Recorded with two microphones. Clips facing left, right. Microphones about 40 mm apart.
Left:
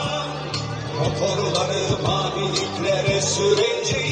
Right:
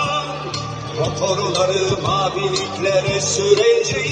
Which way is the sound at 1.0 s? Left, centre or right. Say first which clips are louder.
Right 3 dB; right.